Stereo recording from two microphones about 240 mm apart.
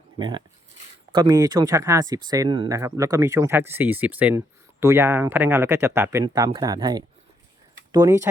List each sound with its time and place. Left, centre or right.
0.2 s speech: centre